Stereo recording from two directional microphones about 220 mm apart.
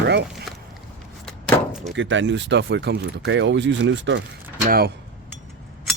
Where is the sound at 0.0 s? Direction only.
50° right (ahead or behind).